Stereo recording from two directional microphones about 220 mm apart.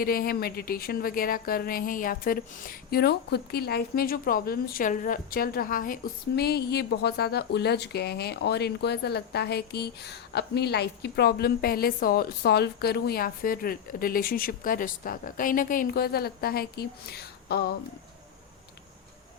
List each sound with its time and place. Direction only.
0.0 s a woman's voice: 40° left (ahead or behind)